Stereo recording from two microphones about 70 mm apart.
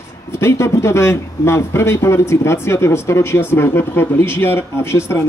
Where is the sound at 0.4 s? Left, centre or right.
Left.